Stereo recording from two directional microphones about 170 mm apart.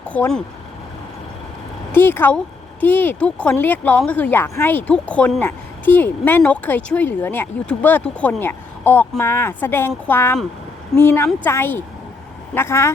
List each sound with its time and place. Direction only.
0.1 s speech: 5° left (ahead or behind)
1.9 s speech: 10° left (ahead or behind)